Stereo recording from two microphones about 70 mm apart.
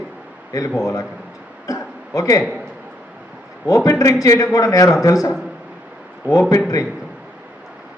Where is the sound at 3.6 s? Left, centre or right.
Left.